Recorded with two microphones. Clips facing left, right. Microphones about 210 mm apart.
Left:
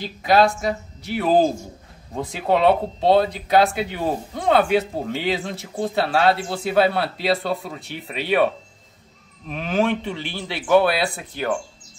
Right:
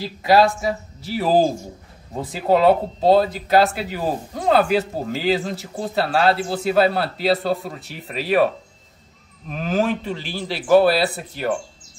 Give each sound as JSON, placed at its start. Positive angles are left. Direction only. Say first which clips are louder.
{"t": 0.0, "sound": "speech", "louder": "right 1 dB", "side_deg": -5}
{"t": 9.5, "sound": "speech", "louder": "even", "side_deg": 0}